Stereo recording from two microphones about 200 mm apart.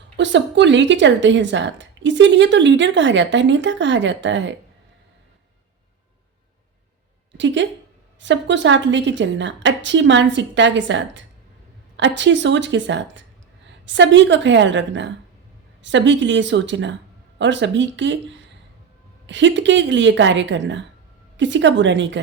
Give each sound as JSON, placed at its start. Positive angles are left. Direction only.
{"t": 0.2, "sound": "a woman's voice", "side_deg": -65}
{"t": 7.3, "sound": "a woman's voice", "side_deg": -65}